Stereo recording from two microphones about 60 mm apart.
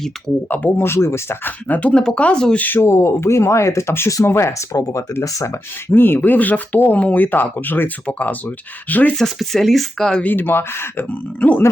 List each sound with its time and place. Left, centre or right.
0.4 s speech: left
0.8 s speech: left
1.5 s speech: left
2.6 s speech: left
2.8 s speech: left
4.7 s speech: left
5.5 s speech: left
9.1 s speech: centre
10.2 s speech: left
11.1 s speech: left